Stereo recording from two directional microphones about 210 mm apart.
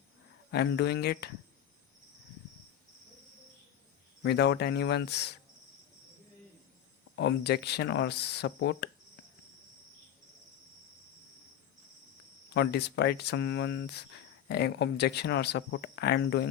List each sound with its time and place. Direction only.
0.5 s speech: 50° left (ahead or behind)
4.2 s speech: 55° left (ahead or behind)
7.2 s speech: 50° left (ahead or behind)
12.5 s speech: 50° left (ahead or behind)